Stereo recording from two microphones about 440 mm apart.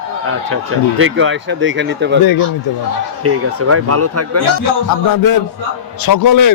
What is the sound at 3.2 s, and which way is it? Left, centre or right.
Speech, right.